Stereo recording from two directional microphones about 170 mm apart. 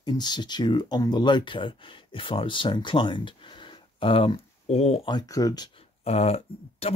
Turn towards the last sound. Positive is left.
turn(degrees=35)  # may be behind; listen again after turning